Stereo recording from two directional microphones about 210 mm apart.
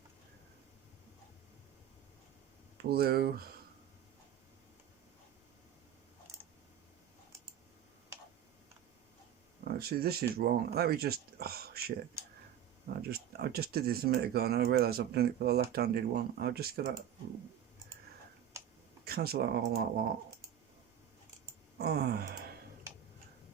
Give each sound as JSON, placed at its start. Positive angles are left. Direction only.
{"t": 2.9, "sound": "speech", "side_deg": -45}
{"t": 9.7, "sound": "speech", "side_deg": -45}
{"t": 13.0, "sound": "speech", "side_deg": -45}
{"t": 19.0, "sound": "speech", "side_deg": -45}
{"t": 21.8, "sound": "speech", "side_deg": -50}